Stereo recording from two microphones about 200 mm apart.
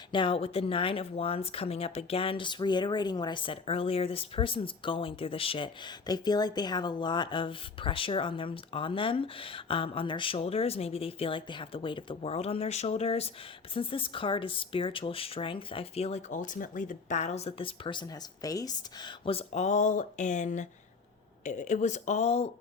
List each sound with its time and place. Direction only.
0.1 s speech: 25° left (ahead or behind)